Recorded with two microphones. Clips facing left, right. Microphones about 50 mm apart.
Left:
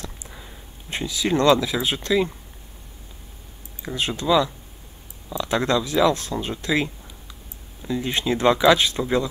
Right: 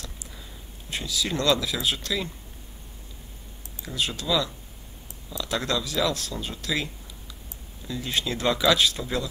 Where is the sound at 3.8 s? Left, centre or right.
Left.